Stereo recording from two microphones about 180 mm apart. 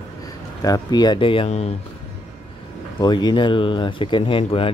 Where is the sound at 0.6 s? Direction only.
20° left (ahead or behind); by 1.7 s 35° left (ahead or behind).